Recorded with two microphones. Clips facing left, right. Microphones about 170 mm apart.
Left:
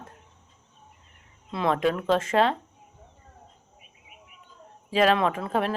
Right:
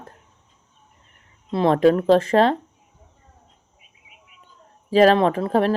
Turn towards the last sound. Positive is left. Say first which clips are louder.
# right 7 dB
turn(degrees=-35)  # may be behind; listen again after turning